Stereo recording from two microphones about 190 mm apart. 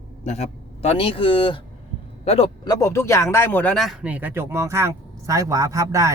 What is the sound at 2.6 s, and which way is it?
Speech, 20° left (ahead or behind).